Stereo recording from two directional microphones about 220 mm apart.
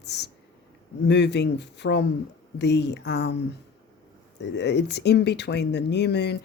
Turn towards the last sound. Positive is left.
turn(degrees=50)  # may be behind; listen again after turning